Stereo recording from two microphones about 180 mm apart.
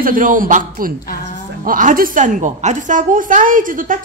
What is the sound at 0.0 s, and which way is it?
A man's voice, 50° right (ahead or behind).